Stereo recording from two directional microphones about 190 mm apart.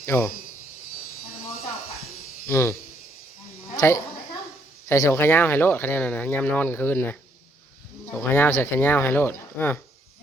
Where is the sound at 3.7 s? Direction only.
15° left (ahead or behind).